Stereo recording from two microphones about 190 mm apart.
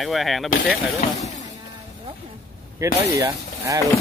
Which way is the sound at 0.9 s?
35° left (ahead or behind).